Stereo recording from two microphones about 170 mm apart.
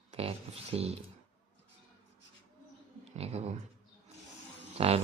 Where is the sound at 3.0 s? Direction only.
40° right (ahead or behind).